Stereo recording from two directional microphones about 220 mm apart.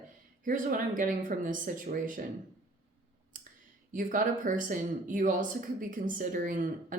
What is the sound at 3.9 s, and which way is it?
Speech, 35° right (ahead or behind).